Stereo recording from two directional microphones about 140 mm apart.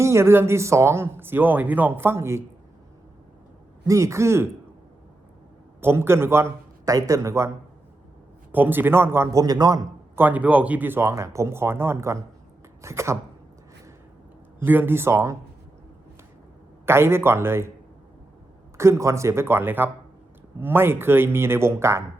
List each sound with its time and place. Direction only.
0.0 s speech: 20° right (ahead or behind)
3.8 s a man's voice: 20° right (ahead or behind)
5.8 s a man's voice: 15° right (ahead or behind)
8.5 s speech: 15° right (ahead or behind)
10.2 s a man's voice: 10° right (ahead or behind)
14.6 s speech: 15° right (ahead or behind)
16.8 s speech: 15° right (ahead or behind)
18.8 s a man's voice: 20° right (ahead or behind)